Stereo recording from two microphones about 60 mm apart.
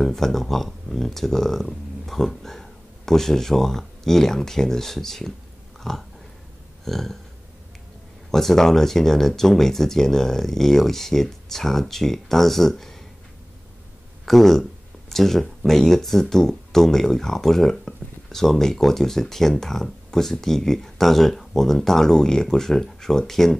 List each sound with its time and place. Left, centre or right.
0.0 s speech: centre
5.8 s dog: centre
6.8 s burping: centre
8.3 s speech: centre
14.2 s speech: centre